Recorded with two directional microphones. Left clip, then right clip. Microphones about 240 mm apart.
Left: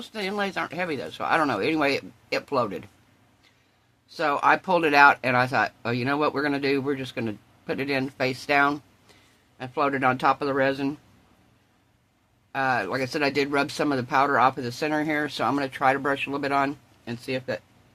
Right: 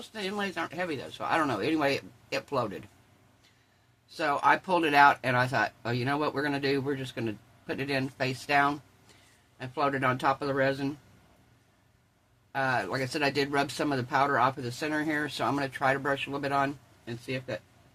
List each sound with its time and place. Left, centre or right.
0.0 s speech: left
4.1 s speech: left
12.5 s speech: left